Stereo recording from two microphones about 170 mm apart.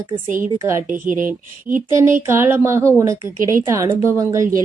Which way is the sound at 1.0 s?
50° right (ahead or behind).